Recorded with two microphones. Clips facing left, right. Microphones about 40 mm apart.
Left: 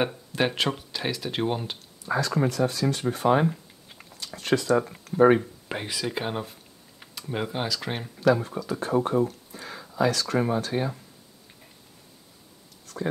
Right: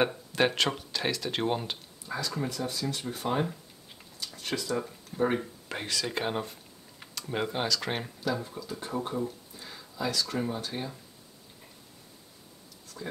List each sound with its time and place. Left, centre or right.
0.3 s speech: centre
2.0 s speech: left
4.3 s speech: left
4.8 s speech: left
5.7 s speech: centre
8.2 s speech: left
9.5 s a sound: left
9.9 s speech: left
12.8 s writing: left